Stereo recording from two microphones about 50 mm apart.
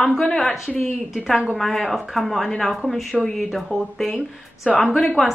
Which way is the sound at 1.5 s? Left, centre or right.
Centre.